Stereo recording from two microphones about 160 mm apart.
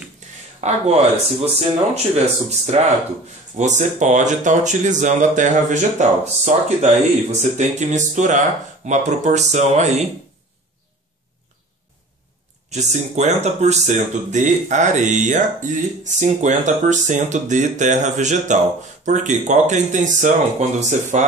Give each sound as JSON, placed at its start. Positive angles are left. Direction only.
{"t": 0.6, "sound": "speech", "side_deg": -45}
{"t": 12.6, "sound": "speech", "side_deg": -45}